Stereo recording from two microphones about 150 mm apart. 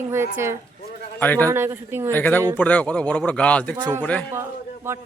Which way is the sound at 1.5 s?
15° right (ahead or behind).